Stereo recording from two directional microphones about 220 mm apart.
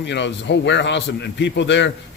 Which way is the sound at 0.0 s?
55° left (ahead or behind).